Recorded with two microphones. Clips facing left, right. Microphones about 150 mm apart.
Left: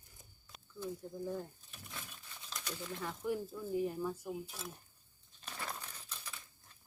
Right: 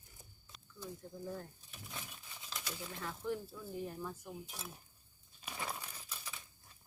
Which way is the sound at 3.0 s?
10° left (ahead or behind).